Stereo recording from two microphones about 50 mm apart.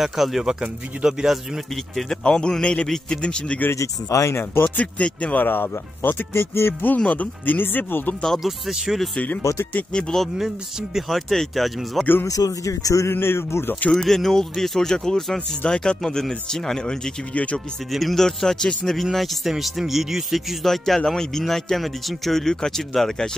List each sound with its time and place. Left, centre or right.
0.0 s speech: centre
2.2 s speech: centre
3.7 s speech: left
4.7 s speech: left
5.4 s speech: left
7.0 s speech: left
8.4 s speech: centre
9.4 s speech: left
10.1 s speech: centre
12.6 s speech: left
13.1 s speech: left
13.9 s speech: centre
17.3 s speech: left
17.9 s speech: centre